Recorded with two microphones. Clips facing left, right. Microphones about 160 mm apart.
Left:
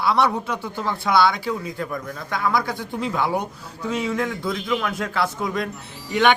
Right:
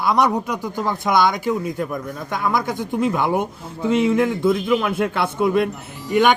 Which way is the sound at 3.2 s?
50° right (ahead or behind).